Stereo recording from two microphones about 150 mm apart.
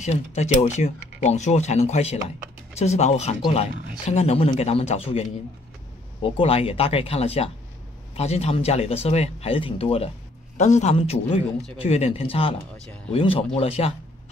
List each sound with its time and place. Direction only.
0.0 s speech: 50° left (ahead or behind)
6.2 s speech: 40° left (ahead or behind)